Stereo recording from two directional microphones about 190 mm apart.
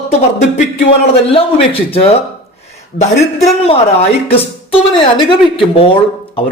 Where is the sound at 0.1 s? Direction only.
35° left (ahead or behind).